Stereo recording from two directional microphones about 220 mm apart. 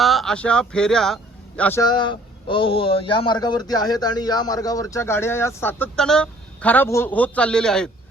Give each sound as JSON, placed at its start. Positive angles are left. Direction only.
{"t": 0.0, "sound": "speech", "side_deg": 0}
{"t": 1.8, "sound": "speech", "side_deg": 20}